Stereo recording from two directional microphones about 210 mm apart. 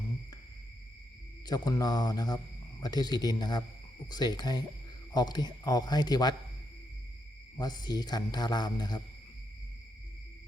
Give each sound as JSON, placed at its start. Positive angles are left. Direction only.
{"t": 1.5, "sound": "speech", "side_deg": 20}
{"t": 7.6, "sound": "speech", "side_deg": 20}